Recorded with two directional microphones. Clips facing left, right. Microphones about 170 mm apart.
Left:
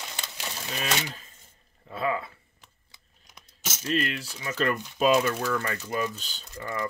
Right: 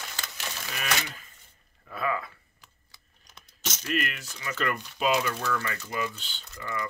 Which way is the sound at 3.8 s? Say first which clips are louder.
Left 3 dB; 30° left (ahead or behind).